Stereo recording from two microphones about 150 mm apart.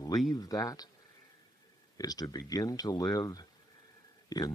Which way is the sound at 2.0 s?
25° left (ahead or behind).